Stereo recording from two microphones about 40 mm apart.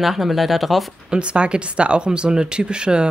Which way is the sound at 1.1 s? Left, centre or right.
Right.